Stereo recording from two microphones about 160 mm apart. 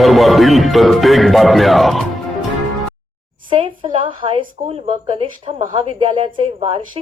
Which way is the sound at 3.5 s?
30° right (ahead or behind).